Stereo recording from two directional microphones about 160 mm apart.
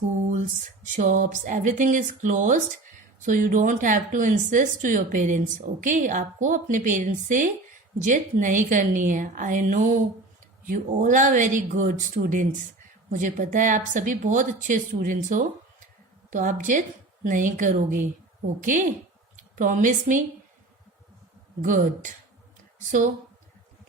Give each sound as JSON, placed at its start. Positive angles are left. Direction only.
{"t": 0.3, "sound": "a woman's voice", "side_deg": -50}
{"t": 21.6, "sound": "a woman's voice", "side_deg": -55}